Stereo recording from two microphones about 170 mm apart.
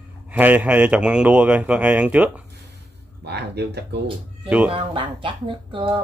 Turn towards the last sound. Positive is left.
turn(degrees=-30)  # may be behind; listen again after turning